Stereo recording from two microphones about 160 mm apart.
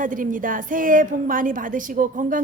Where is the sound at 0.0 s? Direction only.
55° right (ahead or behind).